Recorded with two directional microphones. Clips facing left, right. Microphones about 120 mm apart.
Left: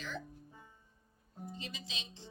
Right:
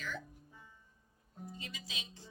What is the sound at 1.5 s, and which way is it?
Speech, 25° left (ahead or behind).